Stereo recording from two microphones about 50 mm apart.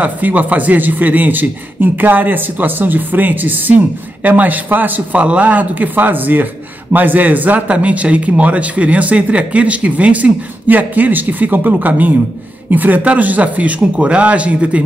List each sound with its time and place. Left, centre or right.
0.0 s a man's voice: right